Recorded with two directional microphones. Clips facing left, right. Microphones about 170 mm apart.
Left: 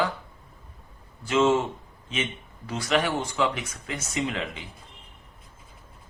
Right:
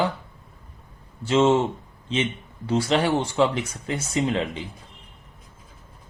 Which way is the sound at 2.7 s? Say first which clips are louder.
Right 4 dB; 30° right (ahead or behind).